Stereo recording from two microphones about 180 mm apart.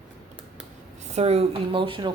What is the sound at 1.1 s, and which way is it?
Speech, 35° right (ahead or behind).